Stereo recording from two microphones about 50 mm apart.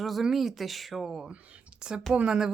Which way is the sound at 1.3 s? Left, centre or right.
Right.